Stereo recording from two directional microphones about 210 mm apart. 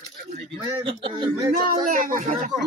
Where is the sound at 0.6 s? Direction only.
25° right (ahead or behind).